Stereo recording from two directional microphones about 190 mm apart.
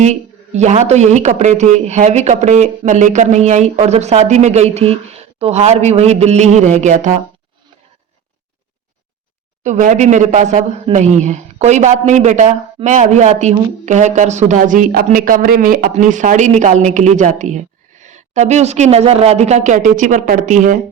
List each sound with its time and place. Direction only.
0.0 s a man's voice: 35° right (ahead or behind)
9.6 s a man's voice: 40° right (ahead or behind)